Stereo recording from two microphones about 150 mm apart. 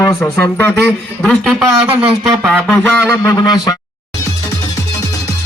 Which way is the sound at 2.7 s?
15° left (ahead or behind).